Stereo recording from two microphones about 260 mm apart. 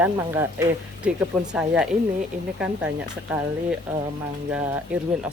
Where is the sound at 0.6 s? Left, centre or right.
Centre.